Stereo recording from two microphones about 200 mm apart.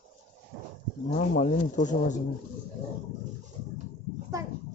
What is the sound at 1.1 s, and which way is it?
Speech, 40° left (ahead or behind).